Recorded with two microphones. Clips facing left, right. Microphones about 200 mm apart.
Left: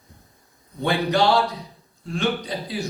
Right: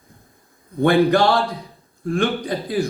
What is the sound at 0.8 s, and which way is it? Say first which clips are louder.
A man's voice: right 5 dB; 50° right (ahead or behind).